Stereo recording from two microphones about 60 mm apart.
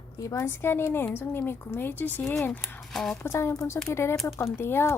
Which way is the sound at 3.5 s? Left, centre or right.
Left.